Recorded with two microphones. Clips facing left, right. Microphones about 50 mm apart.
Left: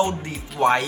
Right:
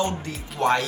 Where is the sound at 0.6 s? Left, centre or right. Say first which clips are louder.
Left 3 dB; centre.